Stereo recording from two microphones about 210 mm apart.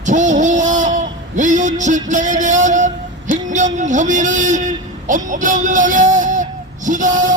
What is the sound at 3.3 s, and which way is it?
Music, 35° right (ahead or behind).